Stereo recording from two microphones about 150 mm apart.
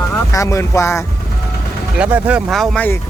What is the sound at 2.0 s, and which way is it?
Speech, 10° right (ahead or behind).